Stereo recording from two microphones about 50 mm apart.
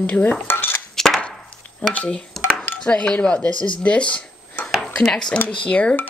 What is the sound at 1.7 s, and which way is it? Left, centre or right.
Speech, left.